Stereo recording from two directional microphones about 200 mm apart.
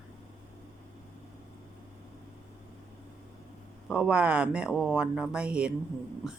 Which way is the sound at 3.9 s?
5° right (ahead or behind).